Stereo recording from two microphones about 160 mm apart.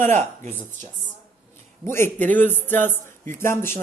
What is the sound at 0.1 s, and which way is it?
Speech, 50° right (ahead or behind).